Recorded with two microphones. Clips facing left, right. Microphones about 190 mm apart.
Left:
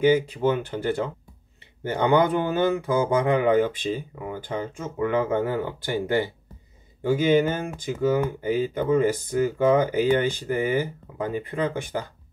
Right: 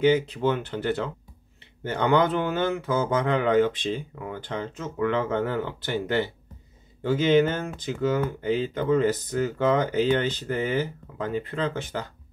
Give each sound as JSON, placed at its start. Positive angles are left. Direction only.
{"t": 0.0, "sound": "speech", "side_deg": 10}